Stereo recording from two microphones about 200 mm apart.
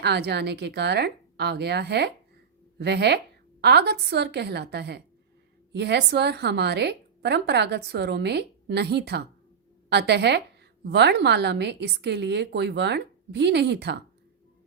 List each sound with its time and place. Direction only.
0.0 s a woman's voice: 55° right (ahead or behind)